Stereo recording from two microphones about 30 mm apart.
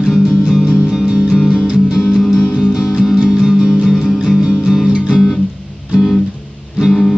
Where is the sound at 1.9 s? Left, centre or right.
Centre.